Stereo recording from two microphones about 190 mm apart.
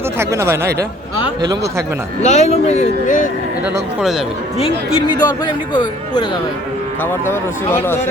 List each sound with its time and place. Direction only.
0.2 s speech: 15° right (ahead or behind)
2.2 s speech: 35° left (ahead or behind)
4.9 s speech: 25° left (ahead or behind)
7.0 s speech: 10° left (ahead or behind)